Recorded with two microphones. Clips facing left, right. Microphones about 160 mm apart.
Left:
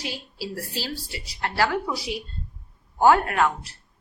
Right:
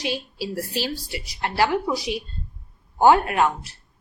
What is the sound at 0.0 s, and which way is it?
A woman's voice, 20° right (ahead or behind).